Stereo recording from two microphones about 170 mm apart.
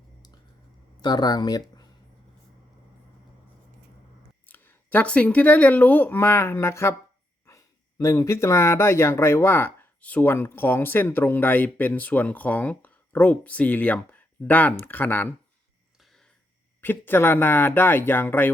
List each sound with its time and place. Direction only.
1.0 s speech: 25° left (ahead or behind)
4.4 s speech: 10° left (ahead or behind)
16.0 s a sound: centre (ahead or behind)
16.8 s speech: 10° left (ahead or behind)